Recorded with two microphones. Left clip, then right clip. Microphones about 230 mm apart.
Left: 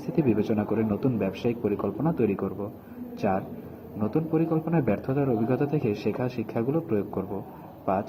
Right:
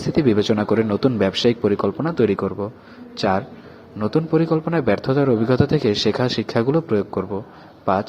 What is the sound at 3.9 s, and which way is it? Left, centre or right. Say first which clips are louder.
A man's voice: right 7 dB; right.